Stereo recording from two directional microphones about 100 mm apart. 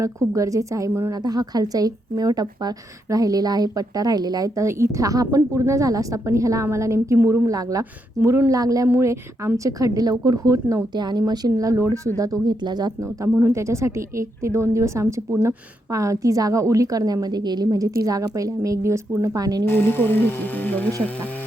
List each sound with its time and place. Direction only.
0.0 s a woman's voice: 35° right (ahead or behind)
1.1 s a woman's voice: 40° right (ahead or behind)
13.0 s a woman's voice: 30° right (ahead or behind)
19.6 s speech: 20° left (ahead or behind)